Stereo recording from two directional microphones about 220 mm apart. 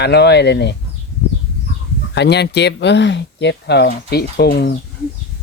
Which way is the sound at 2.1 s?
50° left (ahead or behind).